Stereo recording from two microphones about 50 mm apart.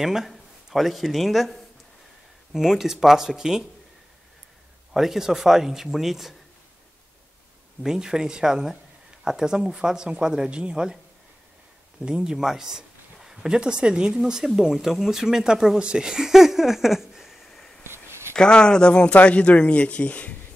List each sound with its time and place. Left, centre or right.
0.0 s speech: centre
4.9 s speech: centre
7.8 s speech: centre
12.0 s speech: centre
17.5 s vehicle: centre
18.3 s speech: centre